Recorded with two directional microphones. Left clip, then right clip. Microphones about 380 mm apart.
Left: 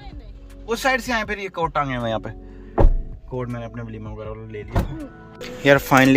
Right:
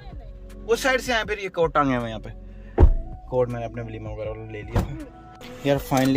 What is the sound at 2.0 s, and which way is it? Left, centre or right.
Speech, centre.